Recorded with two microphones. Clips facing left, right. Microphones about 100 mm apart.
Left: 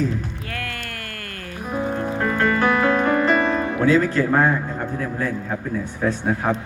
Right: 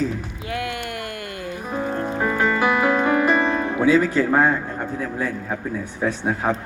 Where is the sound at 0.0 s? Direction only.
15° right (ahead or behind).